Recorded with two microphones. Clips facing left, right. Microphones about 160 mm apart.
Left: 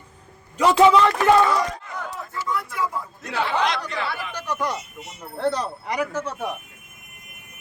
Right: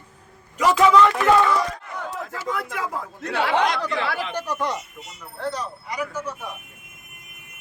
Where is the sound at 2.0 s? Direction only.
75° right (ahead or behind).